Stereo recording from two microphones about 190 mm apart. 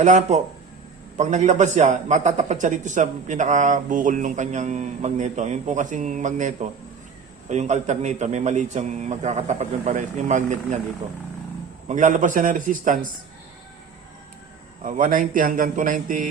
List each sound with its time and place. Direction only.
0.0 s a man's voice: 40° right (ahead or behind)
11.9 s a man's voice: 40° right (ahead or behind)
14.8 s a man's voice: 45° right (ahead or behind)